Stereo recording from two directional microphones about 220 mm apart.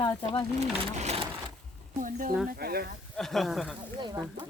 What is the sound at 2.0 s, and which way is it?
Speech, 40° right (ahead or behind).